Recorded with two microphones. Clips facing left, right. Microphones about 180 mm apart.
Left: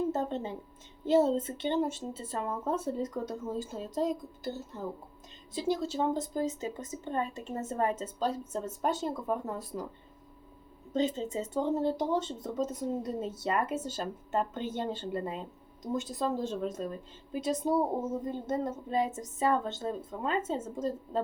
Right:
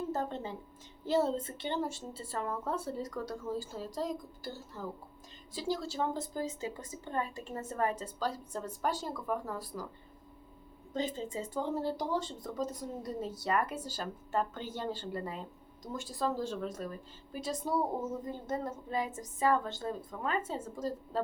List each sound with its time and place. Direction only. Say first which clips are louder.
0.1 s a sound: left 3 dB; 20° left (ahead or behind)
1.0 s a woman's voice: left 5 dB; 20° left (ahead or behind)
10.9 s a woman's voice: left 5 dB; 20° left (ahead or behind)